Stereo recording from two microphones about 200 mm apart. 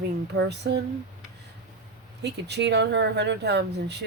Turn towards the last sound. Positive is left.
turn(degrees=-55)  # may be behind; listen again after turning